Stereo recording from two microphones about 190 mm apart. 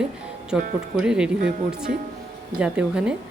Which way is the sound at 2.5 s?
5° right (ahead or behind).